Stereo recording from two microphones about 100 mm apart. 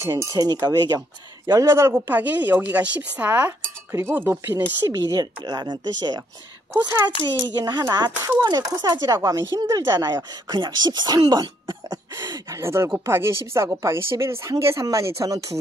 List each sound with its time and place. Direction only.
0.0 s speech: 25° right (ahead or behind)
0.3 s speech: 40° right (ahead or behind)
2.0 s speech: 15° right (ahead or behind)
4.8 s speech: 40° right (ahead or behind)
7.4 s speech: 45° right (ahead or behind)